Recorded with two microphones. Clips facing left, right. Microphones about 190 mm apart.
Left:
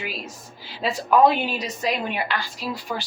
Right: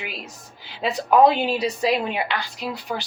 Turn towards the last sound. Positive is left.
turn(degrees=-20)  # may be behind; listen again after turning